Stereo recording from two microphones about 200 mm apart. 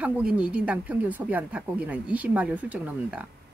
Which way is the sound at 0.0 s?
5° right (ahead or behind).